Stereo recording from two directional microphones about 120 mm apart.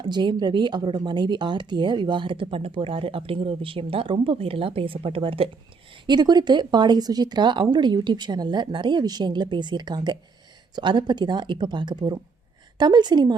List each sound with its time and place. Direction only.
0.0 s speech: 40° right (ahead or behind)
6.1 s speech: 35° right (ahead or behind)